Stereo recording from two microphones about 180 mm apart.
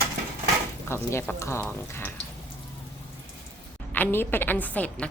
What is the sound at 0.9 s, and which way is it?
Speech, 15° left (ahead or behind).